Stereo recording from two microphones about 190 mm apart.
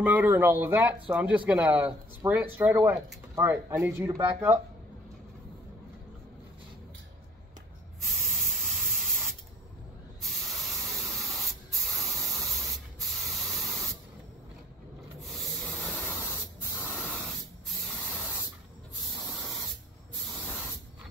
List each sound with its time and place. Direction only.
0.0 s speech: 10° right (ahead or behind)
8.0 s spray: centre (ahead or behind)
10.9 s spray: centre (ahead or behind)
16.8 s spray: 10° left (ahead or behind)